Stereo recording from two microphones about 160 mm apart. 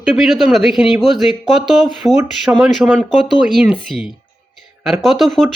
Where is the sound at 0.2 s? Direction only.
Centre (ahead or behind).